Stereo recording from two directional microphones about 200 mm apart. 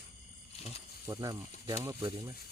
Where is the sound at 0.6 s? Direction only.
30° left (ahead or behind).